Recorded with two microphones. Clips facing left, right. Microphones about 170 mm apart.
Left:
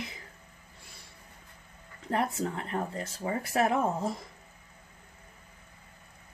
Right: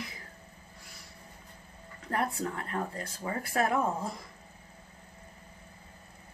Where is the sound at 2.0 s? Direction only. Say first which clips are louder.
Left 2 dB; 20° left (ahead or behind).